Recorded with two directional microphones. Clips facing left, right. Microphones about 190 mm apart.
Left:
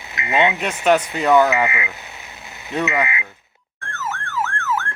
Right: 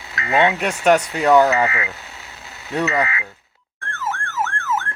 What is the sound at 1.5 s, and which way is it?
Radio, 15° left (ahead or behind).